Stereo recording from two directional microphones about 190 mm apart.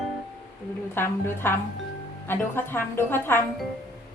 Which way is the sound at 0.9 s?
10° left (ahead or behind).